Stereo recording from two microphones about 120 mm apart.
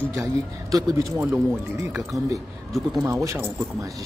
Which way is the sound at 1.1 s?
20° right (ahead or behind).